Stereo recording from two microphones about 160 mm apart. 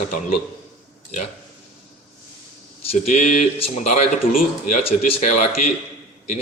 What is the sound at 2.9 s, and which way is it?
Speech, 45° left (ahead or behind).